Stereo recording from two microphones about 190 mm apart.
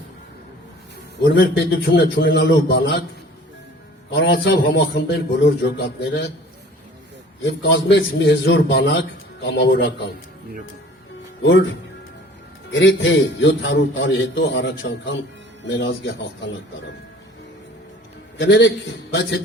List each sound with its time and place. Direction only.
1.2 s a man's voice: 60° left (ahead or behind)
4.1 s a man's voice: 65° left (ahead or behind)
7.7 s a man's voice: 70° left (ahead or behind)
11.4 s a man's voice: 80° left
18.3 s a man's voice: 70° left (ahead or behind)